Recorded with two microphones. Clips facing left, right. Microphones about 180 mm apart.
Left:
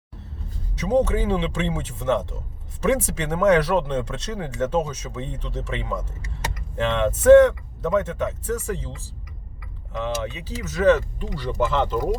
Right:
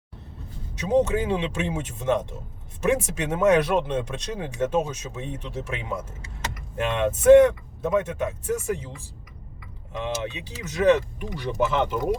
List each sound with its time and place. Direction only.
0.8 s speech: 10° right (ahead or behind)
10.0 s speech: 15° right (ahead or behind)